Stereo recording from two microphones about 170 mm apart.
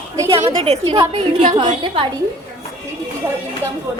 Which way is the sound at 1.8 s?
30° right (ahead or behind).